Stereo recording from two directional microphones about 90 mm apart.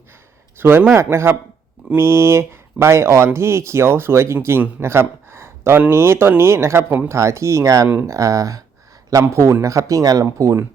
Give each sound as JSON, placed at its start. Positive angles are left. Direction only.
{"t": 0.5, "sound": "a man's voice", "side_deg": -25}